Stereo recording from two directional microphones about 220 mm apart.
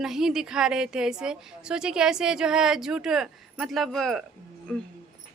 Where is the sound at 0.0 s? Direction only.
Centre (ahead or behind).